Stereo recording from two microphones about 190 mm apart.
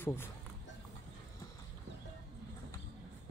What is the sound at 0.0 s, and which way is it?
Speech, 10° left (ahead or behind).